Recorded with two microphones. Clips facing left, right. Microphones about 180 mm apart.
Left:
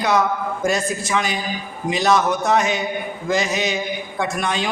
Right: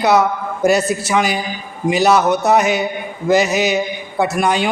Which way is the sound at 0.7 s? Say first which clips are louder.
Right 6 dB; 75° right (ahead or behind).